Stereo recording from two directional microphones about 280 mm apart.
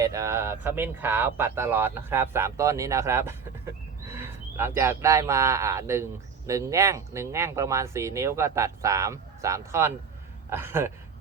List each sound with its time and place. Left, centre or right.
0.0 s speech: centre